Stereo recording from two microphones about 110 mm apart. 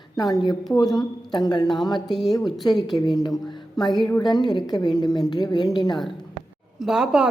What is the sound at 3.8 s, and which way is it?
A woman's voice, 40° left (ahead or behind).